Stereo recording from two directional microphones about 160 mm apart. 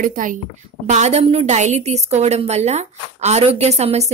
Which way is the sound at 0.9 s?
45° right (ahead or behind).